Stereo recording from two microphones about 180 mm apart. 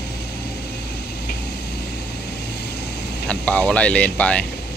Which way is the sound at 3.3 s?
5° left (ahead or behind).